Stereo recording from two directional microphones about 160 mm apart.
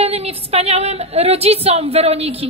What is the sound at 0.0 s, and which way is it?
A woman's voice, 40° right (ahead or behind).